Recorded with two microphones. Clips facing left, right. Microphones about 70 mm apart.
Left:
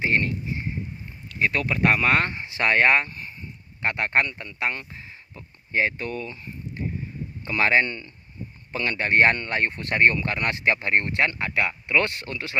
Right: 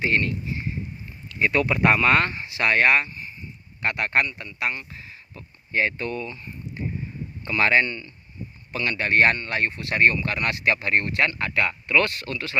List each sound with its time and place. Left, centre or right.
0.0 s speech: left
1.4 s speech: centre
2.0 s speech: centre
2.2 s speech: left
3.1 s a sound: left
3.8 s speech: left
4.9 s a sound: left
6.1 s speech: centre
7.4 s speech: centre
7.9 s speech: left
9.3 s speech: left